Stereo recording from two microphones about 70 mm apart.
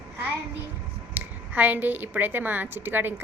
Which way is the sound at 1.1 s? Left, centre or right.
Right.